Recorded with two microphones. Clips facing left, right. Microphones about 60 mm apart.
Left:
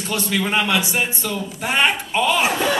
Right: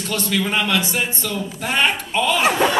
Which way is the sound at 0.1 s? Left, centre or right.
Centre.